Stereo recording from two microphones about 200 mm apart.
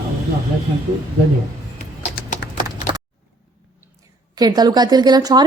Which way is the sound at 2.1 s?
45° left (ahead or behind).